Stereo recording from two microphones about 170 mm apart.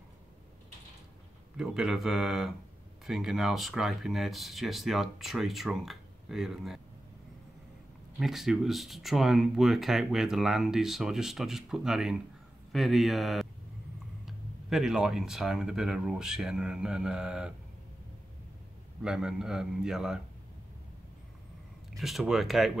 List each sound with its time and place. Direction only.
1.6 s speech: 5° right (ahead or behind)
8.2 s speech: centre (ahead or behind)
19.0 s speech: 5° right (ahead or behind)
21.9 s speech: centre (ahead or behind)